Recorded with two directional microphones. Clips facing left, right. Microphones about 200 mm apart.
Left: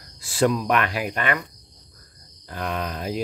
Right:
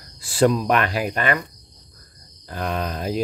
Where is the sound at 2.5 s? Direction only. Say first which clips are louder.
Right 2 dB; 35° right (ahead or behind).